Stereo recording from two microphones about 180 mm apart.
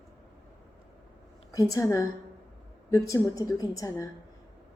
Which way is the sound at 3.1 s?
20° left (ahead or behind).